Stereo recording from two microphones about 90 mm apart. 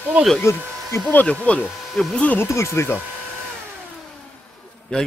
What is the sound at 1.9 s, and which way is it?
Speech, centre (ahead or behind).